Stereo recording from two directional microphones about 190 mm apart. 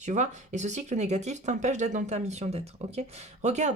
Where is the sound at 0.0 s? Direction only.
40° right (ahead or behind).